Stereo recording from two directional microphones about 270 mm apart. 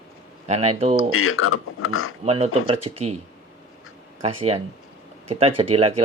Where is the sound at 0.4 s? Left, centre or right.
Right.